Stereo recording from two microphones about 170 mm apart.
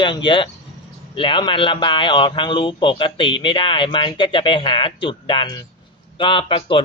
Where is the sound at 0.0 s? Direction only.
30° left (ahead or behind).